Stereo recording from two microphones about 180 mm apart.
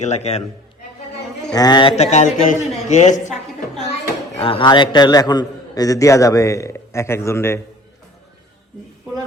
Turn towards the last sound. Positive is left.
turn(degrees=15)  # may be behind; listen again after turning